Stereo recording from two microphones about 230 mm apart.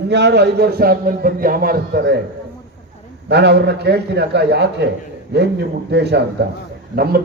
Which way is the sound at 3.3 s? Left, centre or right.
Right.